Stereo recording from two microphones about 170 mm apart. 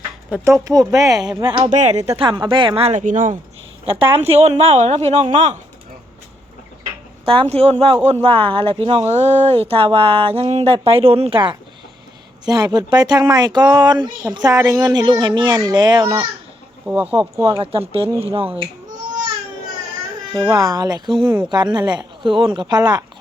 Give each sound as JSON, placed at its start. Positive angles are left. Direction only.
{"t": 0.4, "sound": "speech", "side_deg": -20}
{"t": 1.7, "sound": "speech", "side_deg": -40}
{"t": 3.8, "sound": "speech", "side_deg": -35}
{"t": 7.3, "sound": "speech", "side_deg": -35}
{"t": 16.8, "sound": "speech", "side_deg": -10}
{"t": 17.2, "sound": "speech", "side_deg": -30}
{"t": 20.5, "sound": "speech", "side_deg": -20}